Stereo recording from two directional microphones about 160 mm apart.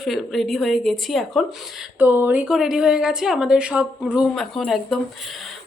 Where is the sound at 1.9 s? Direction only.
10° right (ahead or behind).